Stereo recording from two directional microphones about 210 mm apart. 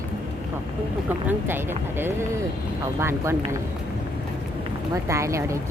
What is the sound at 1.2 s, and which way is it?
A woman's voice, 10° right (ahead or behind).